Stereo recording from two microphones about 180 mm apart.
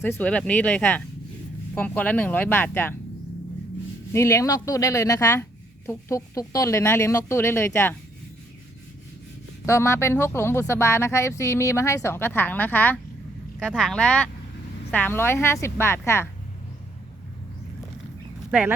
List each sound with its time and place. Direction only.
0.0 s speech: 10° left (ahead or behind)
4.1 s speech: 15° left (ahead or behind)
9.6 s speech: 15° left (ahead or behind)
13.6 s speech: centre (ahead or behind); by 16.3 s 15° left (ahead or behind)